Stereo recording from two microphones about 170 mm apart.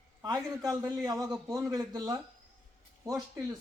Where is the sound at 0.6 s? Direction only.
20° right (ahead or behind).